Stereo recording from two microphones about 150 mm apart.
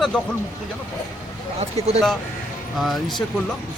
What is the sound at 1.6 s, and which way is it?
Speech, 45° right (ahead or behind).